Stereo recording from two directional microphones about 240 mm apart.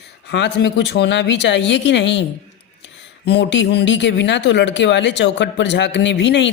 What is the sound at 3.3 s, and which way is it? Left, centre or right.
Speech, left.